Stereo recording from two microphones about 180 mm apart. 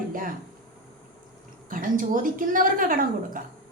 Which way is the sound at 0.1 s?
50° right (ahead or behind).